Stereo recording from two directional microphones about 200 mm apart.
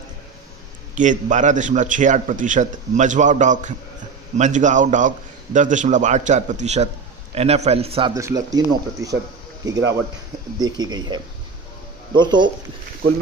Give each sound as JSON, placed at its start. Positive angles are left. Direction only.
{"t": 0.9, "sound": "speech", "side_deg": -40}
{"t": 8.1, "sound": "speech", "side_deg": -15}
{"t": 12.2, "sound": "speech", "side_deg": -20}